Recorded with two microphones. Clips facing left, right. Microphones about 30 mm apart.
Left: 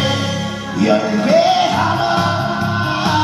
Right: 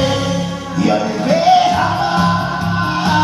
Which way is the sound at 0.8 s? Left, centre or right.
Centre.